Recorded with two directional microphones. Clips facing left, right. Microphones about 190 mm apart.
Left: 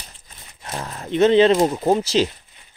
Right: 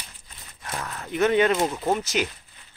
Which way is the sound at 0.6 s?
30° left (ahead or behind).